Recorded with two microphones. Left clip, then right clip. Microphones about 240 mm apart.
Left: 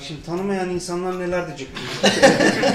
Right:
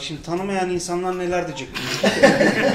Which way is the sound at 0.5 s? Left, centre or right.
Right.